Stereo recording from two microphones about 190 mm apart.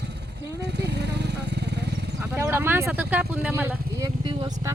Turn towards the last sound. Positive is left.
turn(degrees=-25)  # may be behind; listen again after turning